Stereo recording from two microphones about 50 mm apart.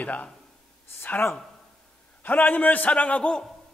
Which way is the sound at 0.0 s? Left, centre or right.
Left.